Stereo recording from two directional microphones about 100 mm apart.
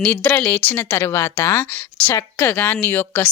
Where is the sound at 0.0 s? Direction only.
15° left (ahead or behind).